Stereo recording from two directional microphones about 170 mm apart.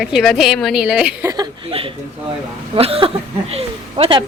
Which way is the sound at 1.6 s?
35° right (ahead or behind).